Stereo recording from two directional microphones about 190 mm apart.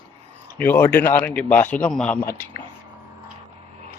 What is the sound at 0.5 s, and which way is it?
A man's voice, 10° left (ahead or behind).